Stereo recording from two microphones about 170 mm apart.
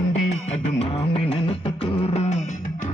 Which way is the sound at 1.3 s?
35° left (ahead or behind).